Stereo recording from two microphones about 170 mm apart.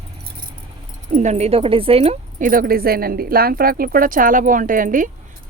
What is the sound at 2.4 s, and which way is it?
Speech, 55° right (ahead or behind).